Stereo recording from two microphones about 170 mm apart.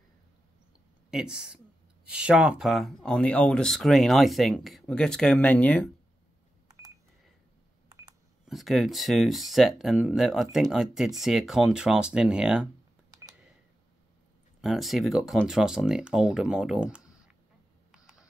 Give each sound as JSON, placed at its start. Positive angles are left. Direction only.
{"t": 1.1, "sound": "speech", "side_deg": -5}
{"t": 6.7, "sound": "a sound", "side_deg": -20}
{"t": 8.5, "sound": "speech", "side_deg": 0}
{"t": 13.1, "sound": "a sound", "side_deg": -20}
{"t": 14.6, "sound": "speech", "side_deg": 0}
{"t": 17.9, "sound": "camera", "side_deg": -5}